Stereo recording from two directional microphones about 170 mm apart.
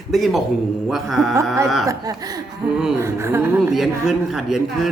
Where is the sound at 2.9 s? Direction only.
15° right (ahead or behind).